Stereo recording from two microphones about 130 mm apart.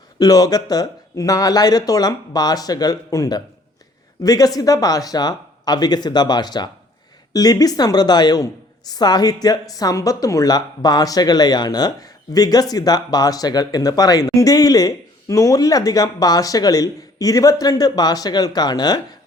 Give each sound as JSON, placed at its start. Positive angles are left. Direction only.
{"t": 0.2, "sound": "a woman's voice", "side_deg": 25}